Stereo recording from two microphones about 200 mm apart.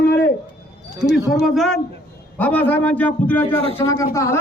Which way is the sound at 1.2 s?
Centre (ahead or behind).